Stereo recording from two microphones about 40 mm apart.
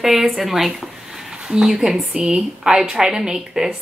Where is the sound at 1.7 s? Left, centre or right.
Centre.